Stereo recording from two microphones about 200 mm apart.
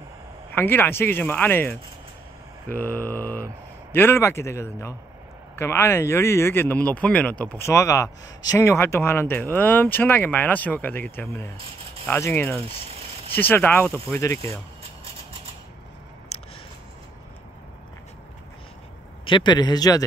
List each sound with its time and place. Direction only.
0.5 s speech: 10° left (ahead or behind)
2.7 s mantra: 10° left (ahead or behind)
3.9 s speech: 10° left (ahead or behind)
19.2 s a man's voice: 25° left (ahead or behind)